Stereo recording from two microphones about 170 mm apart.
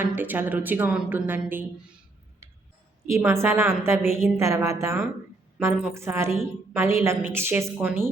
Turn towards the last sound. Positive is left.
turn(degrees=-10)  # may be behind; listen again after turning